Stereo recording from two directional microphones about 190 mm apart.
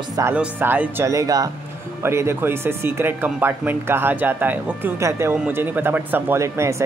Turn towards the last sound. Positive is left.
turn(degrees=-15)  # may be behind; listen again after turning